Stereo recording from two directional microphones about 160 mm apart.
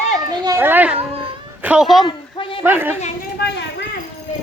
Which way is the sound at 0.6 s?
10° right (ahead or behind).